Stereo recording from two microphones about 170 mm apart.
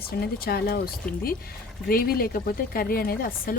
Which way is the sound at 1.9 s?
60° left (ahead or behind).